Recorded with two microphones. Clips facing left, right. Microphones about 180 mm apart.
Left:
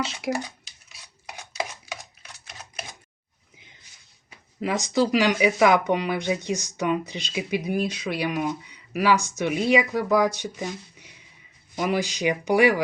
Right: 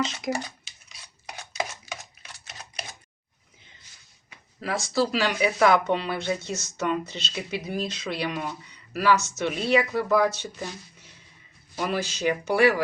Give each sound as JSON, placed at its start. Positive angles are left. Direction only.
{"t": 0.0, "sound": "speech", "side_deg": 10}
{"t": 0.6, "sound": "chopping", "side_deg": 5}
{"t": 2.4, "sound": "computer keyboard", "side_deg": 0}
{"t": 4.6, "sound": "speech", "side_deg": 20}